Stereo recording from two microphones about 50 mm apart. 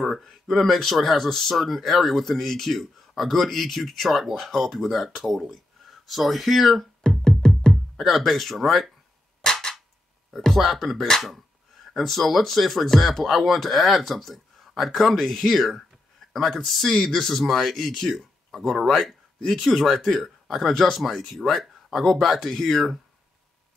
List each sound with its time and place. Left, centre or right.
0.0 s speech: centre
7.2 s music: centre
7.7 s speech: centre
9.4 s a sound: centre
10.3 s speech: centre